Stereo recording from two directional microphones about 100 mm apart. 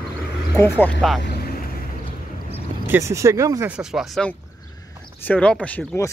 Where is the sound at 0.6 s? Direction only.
20° left (ahead or behind).